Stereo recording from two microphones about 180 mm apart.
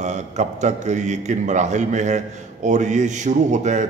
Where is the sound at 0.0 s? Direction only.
40° right (ahead or behind).